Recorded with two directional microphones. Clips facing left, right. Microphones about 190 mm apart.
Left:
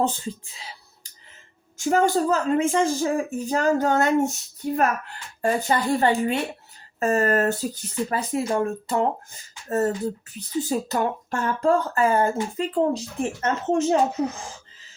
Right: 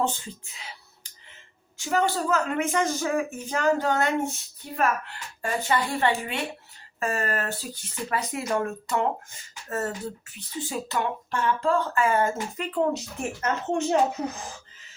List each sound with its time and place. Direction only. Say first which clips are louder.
0.0 s speech: left 3 dB; 35° left (ahead or behind)
1.8 s speech: left 5 dB; 40° left (ahead or behind)